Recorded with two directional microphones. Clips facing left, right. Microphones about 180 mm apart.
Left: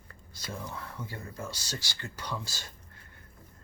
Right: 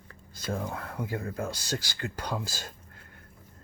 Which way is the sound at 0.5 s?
55° right (ahead or behind).